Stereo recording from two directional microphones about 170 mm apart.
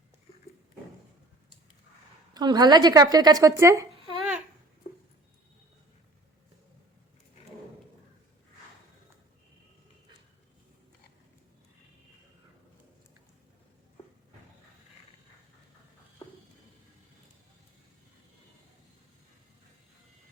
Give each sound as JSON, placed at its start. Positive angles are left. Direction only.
{"t": 2.3, "sound": "a woman's voice", "side_deg": -25}
{"t": 4.2, "sound": "babbling", "side_deg": -5}